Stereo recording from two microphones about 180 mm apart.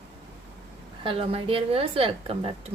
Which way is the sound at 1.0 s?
30° right (ahead or behind).